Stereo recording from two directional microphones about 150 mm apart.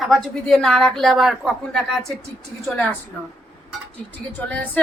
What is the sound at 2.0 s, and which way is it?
Speech, 20° right (ahead or behind).